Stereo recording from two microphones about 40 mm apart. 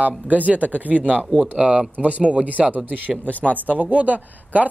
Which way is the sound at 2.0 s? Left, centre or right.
Right.